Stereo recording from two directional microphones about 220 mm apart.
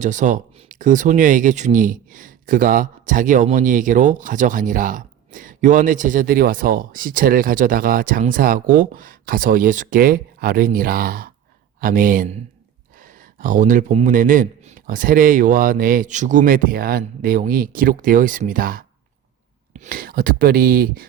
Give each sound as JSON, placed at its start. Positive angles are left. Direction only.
{"t": 0.0, "sound": "speech", "side_deg": -35}